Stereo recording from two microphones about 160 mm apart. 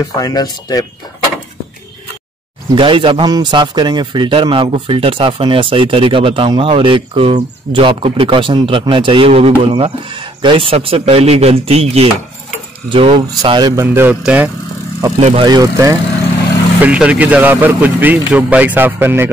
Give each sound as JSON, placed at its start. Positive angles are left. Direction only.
{"t": 0.0, "sound": "speech", "side_deg": 25}
{"t": 2.7, "sound": "a man's voice", "side_deg": -30}
{"t": 15.1, "sound": "a man's voice", "side_deg": -40}
{"t": 15.4, "sound": "speech", "side_deg": -25}
{"t": 16.8, "sound": "a man's voice", "side_deg": -5}